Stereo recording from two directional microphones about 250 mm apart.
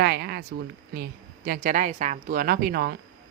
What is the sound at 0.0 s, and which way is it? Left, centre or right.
Speech, right.